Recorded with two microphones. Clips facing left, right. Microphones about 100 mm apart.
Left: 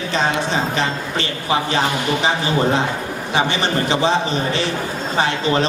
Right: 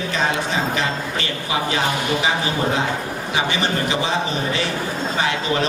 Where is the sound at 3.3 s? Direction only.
30° left (ahead or behind).